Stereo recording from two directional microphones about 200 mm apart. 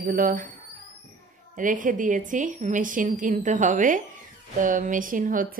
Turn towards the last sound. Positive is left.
turn(degrees=-40)  # may be behind; listen again after turning